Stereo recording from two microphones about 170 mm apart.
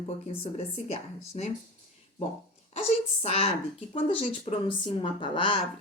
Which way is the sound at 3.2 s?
35° left (ahead or behind).